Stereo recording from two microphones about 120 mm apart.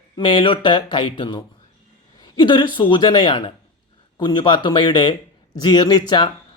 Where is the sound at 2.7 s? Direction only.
40° left (ahead or behind).